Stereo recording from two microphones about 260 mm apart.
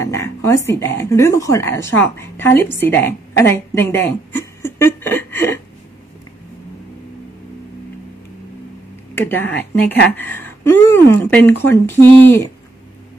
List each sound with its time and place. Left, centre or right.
0.0 s speech: centre
9.1 s speech: centre